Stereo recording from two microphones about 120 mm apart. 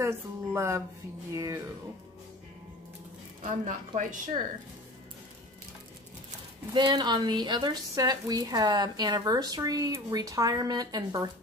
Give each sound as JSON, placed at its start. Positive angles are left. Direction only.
{"t": 0.0, "sound": "speech", "side_deg": -20}
{"t": 3.6, "sound": "a woman's voice", "side_deg": -90}
{"t": 6.7, "sound": "speech", "side_deg": -40}